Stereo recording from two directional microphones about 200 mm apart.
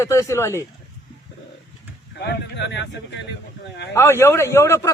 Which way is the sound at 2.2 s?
60° left (ahead or behind).